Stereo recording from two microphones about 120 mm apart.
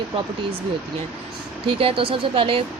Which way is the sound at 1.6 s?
50° right (ahead or behind).